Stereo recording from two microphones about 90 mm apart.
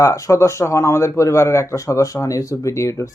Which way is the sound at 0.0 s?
35° left (ahead or behind).